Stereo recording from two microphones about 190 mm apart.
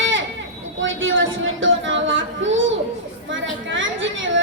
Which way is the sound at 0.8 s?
90° right.